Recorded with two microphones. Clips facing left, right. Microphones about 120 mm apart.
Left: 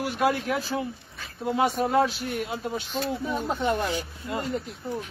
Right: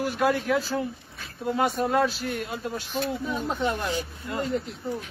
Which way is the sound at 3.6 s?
50° left (ahead or behind).